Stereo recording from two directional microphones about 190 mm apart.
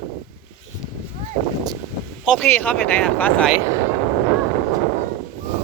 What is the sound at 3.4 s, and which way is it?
Speech, 10° right (ahead or behind).